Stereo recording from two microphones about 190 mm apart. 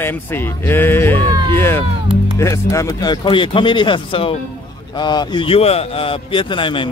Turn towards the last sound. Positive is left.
turn(degrees=25)  # may be behind; listen again after turning